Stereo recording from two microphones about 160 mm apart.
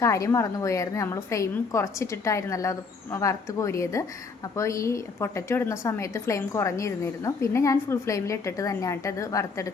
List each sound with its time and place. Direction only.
0.0 s a woman's voice: 20° left (ahead or behind)